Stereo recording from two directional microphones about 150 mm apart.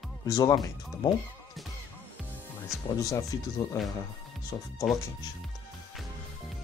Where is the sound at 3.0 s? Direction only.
20° left (ahead or behind).